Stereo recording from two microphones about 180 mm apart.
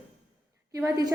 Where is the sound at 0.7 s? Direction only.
20° right (ahead or behind).